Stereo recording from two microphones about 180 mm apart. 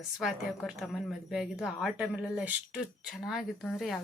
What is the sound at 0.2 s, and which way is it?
A woman's voice, centre (ahead or behind).